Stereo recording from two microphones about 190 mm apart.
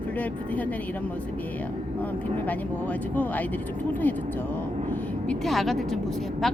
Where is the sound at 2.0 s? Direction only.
10° left (ahead or behind).